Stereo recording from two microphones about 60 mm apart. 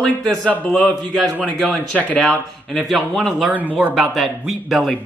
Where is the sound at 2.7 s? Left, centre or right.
Centre.